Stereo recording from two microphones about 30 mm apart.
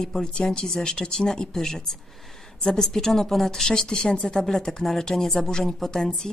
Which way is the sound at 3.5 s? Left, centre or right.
Centre.